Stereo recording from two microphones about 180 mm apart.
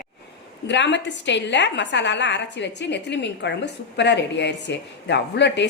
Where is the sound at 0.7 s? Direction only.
80° left.